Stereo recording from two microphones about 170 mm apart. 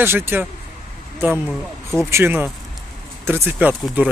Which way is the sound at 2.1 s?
10° right (ahead or behind).